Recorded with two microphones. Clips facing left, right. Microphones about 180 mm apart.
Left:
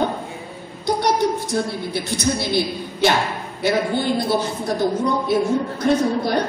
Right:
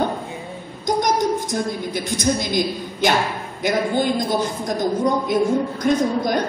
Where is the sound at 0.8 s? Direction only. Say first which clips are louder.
Even; 15° right (ahead or behind).